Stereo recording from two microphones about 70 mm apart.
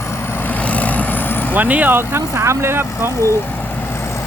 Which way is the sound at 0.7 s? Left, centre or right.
Left.